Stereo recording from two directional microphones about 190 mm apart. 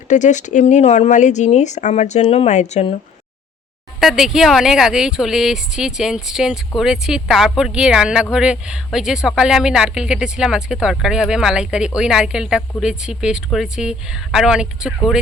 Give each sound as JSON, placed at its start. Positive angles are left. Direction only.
{"t": 0.1, "sound": "speech", "side_deg": 40}
{"t": 4.0, "sound": "speech", "side_deg": 0}